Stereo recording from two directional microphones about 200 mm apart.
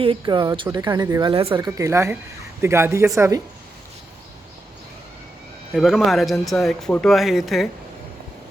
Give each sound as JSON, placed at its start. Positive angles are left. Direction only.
{"t": 0.0, "sound": "speech", "side_deg": -25}
{"t": 5.7, "sound": "speech", "side_deg": 0}